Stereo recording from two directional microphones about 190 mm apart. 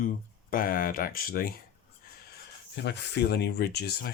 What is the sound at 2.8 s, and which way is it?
Speech, 65° left (ahead or behind).